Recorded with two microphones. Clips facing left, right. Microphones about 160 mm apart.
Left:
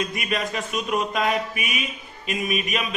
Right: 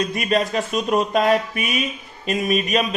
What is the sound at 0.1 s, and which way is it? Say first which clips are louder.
A man's voice: right 6 dB; 30° right (ahead or behind).